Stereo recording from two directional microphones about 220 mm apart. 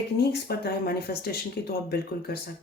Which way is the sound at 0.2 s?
45° left (ahead or behind).